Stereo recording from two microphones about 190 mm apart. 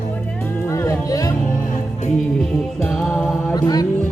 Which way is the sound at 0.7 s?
15° left (ahead or behind).